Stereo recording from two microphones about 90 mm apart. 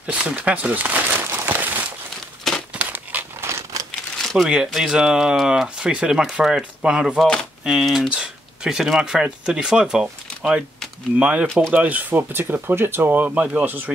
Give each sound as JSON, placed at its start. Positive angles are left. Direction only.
{"t": 0.0, "sound": "speech", "side_deg": -15}
{"t": 1.2, "sound": "crumpling", "side_deg": -25}
{"t": 4.2, "sound": "a sound", "side_deg": 5}
{"t": 4.5, "sound": "speech", "side_deg": -5}